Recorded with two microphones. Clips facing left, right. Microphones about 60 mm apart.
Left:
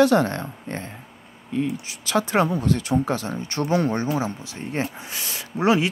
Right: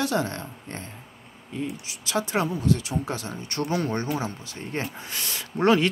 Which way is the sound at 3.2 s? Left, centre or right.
Left.